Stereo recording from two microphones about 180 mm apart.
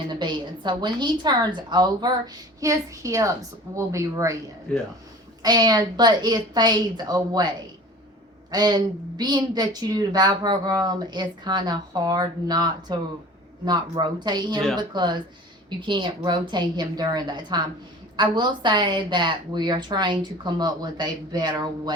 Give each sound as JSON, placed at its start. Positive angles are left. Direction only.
{"t": 0.1, "sound": "a woman's voice", "side_deg": -25}
{"t": 5.4, "sound": "a woman's voice", "side_deg": -20}